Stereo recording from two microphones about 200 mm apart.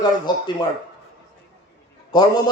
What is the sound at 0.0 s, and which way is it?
Speech, 20° left (ahead or behind).